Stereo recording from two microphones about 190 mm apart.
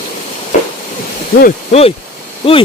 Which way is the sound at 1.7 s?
30° left (ahead or behind).